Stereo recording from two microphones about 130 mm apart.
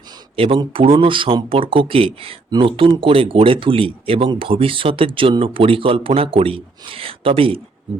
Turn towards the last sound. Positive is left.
turn(degrees=-45)  # may be behind; listen again after turning